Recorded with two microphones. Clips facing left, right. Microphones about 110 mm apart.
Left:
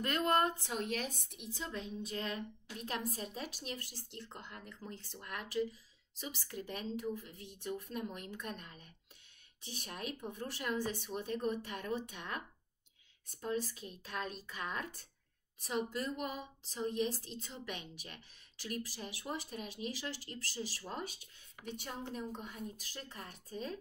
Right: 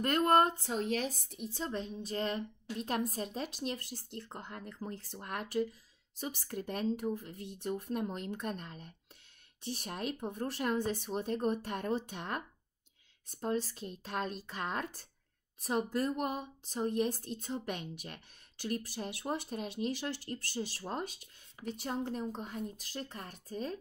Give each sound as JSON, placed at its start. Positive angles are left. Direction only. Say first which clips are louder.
{"t": 0.0, "sound": "a woman's voice", "louder": "right 5 dB", "side_deg": -50}